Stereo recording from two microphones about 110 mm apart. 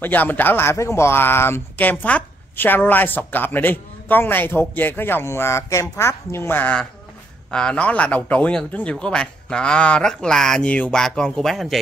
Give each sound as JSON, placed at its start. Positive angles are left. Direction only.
{"t": 0.0, "sound": "speech", "side_deg": 15}